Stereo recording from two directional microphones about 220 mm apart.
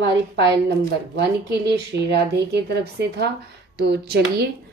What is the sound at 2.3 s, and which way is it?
A woman's voice, 50° right (ahead or behind).